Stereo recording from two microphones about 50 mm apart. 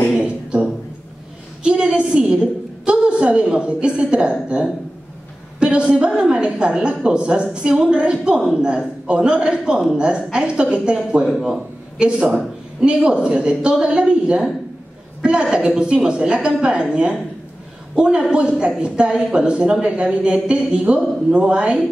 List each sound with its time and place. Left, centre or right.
0.2 s a sound: right
5.6 s a woman's voice: right
8.4 s a woman's voice: centre
8.6 s a woman's voice: right
15.5 s speech: centre